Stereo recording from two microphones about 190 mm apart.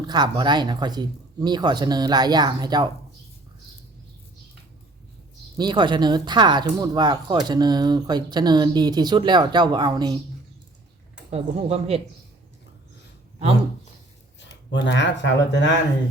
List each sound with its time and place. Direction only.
0.1 s speech: 25° right (ahead or behind)
5.5 s speech: 25° right (ahead or behind)
11.3 s speech: 35° right (ahead or behind)
14.3 s speech: 70° left (ahead or behind)